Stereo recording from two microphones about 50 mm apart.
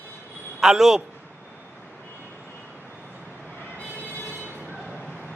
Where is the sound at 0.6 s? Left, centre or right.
Centre.